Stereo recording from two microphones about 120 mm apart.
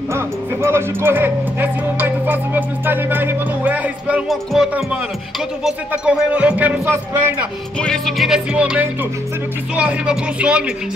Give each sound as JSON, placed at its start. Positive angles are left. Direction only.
{"t": 0.1, "sound": "speech", "side_deg": -20}
{"t": 4.3, "sound": "music", "side_deg": 0}
{"t": 5.6, "sound": "speech", "side_deg": -5}
{"t": 7.8, "sound": "music", "side_deg": 5}
{"t": 9.8, "sound": "speech", "side_deg": -10}